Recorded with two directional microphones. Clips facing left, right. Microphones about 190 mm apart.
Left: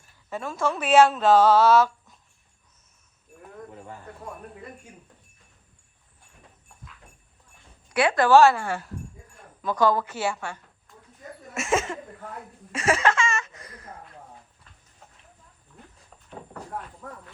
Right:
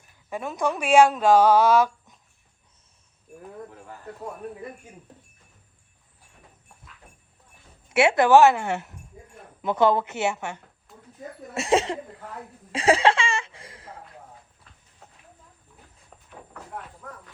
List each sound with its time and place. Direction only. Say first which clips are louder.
0.0 s speech: right 1 dB; 15° right (ahead or behind)
7.9 s speech: right 2 dB; 25° right (ahead or behind)
11.5 s speech: right 3 dB; 35° right (ahead or behind)
12.7 s laughter: right 3 dB; 35° right (ahead or behind)